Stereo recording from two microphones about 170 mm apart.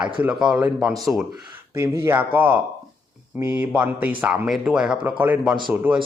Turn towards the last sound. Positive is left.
turn(degrees=-5)  # may be behind; listen again after turning